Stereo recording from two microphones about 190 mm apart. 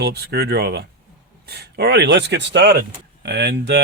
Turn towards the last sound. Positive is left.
turn(degrees=-60)  # may be behind; listen again after turning